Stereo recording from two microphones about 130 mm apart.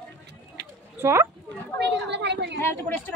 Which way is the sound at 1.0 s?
20° right (ahead or behind).